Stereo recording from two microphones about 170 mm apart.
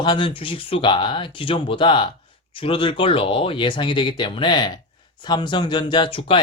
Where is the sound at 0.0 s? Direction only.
30° left (ahead or behind).